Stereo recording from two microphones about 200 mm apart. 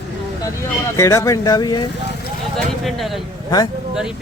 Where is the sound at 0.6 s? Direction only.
15° left (ahead or behind).